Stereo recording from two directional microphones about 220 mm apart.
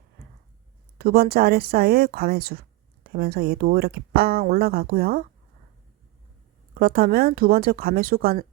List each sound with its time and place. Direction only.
0.9 s speech: 45° right (ahead or behind)
6.7 s speech: 45° right (ahead or behind)